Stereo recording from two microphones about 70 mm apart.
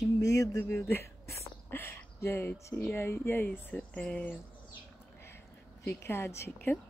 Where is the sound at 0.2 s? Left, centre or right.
Left.